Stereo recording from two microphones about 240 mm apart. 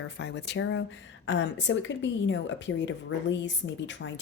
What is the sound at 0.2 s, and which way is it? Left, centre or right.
Speech, left.